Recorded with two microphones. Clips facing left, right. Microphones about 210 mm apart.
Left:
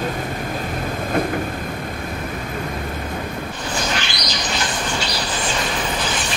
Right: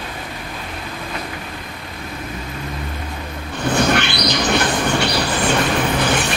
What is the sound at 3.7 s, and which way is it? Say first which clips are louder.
Train: right 9 dB; 60° right (ahead or behind).